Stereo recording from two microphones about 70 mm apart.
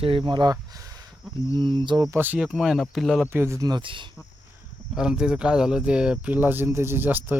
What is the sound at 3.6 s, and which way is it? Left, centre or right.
Speech, right.